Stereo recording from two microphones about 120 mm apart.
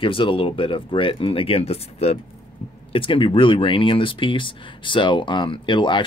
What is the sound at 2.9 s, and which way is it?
Speech, 45° left (ahead or behind).